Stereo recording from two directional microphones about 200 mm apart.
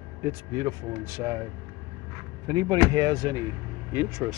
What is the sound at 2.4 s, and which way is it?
Speech, 20° right (ahead or behind).